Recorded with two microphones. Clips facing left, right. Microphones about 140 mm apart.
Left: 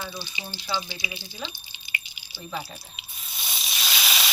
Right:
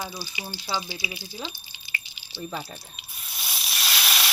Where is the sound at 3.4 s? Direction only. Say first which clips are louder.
Right 1 dB; centre (ahead or behind).